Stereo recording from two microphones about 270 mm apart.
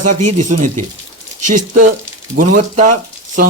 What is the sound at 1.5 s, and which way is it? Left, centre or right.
A man's voice, right.